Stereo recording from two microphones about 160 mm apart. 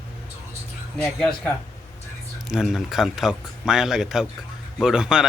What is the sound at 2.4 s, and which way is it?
A man's voice, centre (ahead or behind).